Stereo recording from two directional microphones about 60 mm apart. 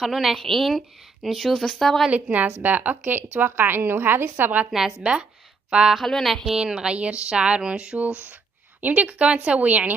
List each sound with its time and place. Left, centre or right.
0.0 s a woman's voice: centre
2.0 s a woman's voice: right
5.1 s speech: centre
5.9 s speech: centre
6.4 s a woman's voice: centre; by 9.9 s right